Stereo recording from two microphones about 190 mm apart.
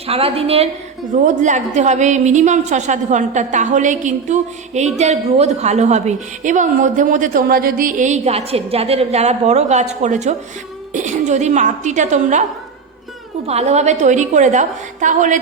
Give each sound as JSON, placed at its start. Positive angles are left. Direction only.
{"t": 0.1, "sound": "a woman's voice", "side_deg": -30}
{"t": 13.5, "sound": "a woman's voice", "side_deg": -35}